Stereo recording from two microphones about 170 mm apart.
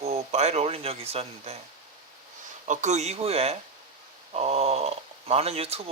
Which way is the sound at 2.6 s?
45° right (ahead or behind).